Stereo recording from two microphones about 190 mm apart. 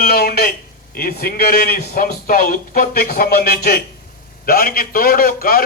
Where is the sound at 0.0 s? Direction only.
55° left (ahead or behind).